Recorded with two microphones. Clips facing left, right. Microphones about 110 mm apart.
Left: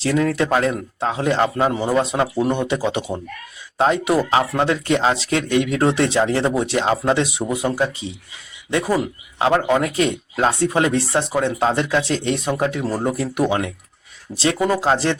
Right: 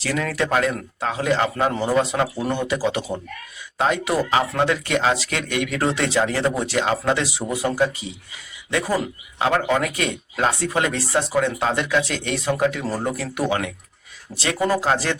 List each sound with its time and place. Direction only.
0.0 s speech: 25° left (ahead or behind)
1.5 s a man's voice: 10° left (ahead or behind)
2.0 s speech: 25° left (ahead or behind)
9.4 s speech: 20° left (ahead or behind)
14.7 s speech: 25° left (ahead or behind)